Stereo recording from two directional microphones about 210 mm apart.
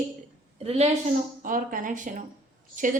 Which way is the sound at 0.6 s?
30° right (ahead or behind).